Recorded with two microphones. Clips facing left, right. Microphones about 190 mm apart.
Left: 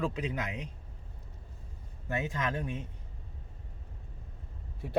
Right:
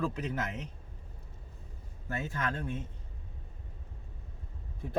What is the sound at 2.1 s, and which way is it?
Speech, 15° left (ahead or behind).